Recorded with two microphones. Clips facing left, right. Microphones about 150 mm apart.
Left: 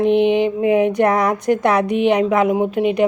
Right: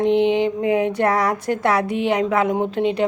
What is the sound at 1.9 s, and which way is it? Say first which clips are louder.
Speech: left 4 dB; 20° left (ahead or behind).